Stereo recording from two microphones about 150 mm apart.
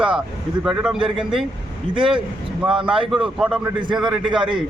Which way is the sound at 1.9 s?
35° right (ahead or behind).